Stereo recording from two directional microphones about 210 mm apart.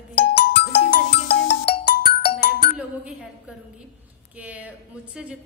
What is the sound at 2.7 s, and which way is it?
Speech, 5° right (ahead or behind).